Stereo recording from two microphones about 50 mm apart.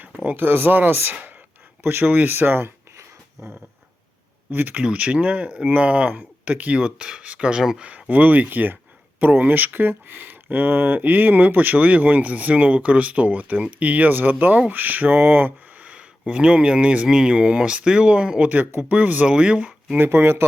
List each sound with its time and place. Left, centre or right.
0.3 s speech: right
3.4 s a sound: right
4.7 s speech: right
15.8 s a sound: right
16.3 s speech: right
19.3 s speech: centre
20.0 s speech: right